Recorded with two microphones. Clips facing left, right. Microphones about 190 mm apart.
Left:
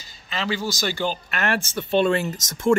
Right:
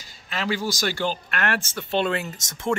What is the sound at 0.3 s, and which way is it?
Speech, 10° right (ahead or behind).